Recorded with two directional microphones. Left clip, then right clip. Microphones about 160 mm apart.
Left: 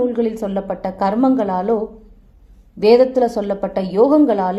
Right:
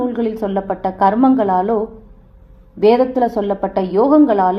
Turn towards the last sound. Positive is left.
turn(degrees=30)  # may be behind; listen again after turning